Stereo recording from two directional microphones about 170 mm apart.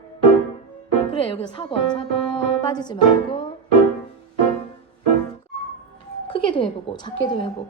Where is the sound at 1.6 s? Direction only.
30° left (ahead or behind).